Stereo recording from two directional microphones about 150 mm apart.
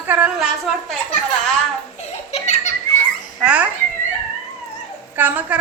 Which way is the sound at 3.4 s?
10° right (ahead or behind).